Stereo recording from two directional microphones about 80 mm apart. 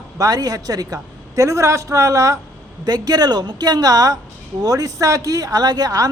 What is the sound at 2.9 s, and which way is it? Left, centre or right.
A woman's voice, right.